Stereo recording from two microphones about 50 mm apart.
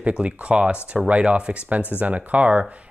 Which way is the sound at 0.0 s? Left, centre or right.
Right.